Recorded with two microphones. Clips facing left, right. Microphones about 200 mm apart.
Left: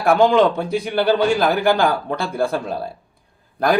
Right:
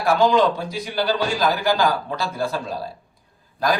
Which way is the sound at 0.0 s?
55° left (ahead or behind).